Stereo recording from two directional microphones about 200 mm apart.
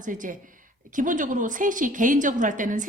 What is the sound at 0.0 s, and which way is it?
A woman's voice, 40° right (ahead or behind).